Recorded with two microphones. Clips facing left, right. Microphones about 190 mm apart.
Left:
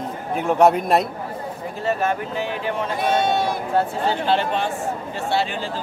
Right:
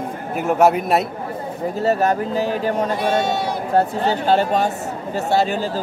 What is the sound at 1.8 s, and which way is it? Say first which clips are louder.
Speech: right 4 dB; 40° right (ahead or behind).